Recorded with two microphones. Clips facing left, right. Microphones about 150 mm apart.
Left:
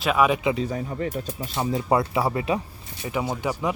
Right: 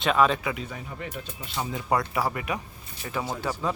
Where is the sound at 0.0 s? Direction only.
10° left (ahead or behind).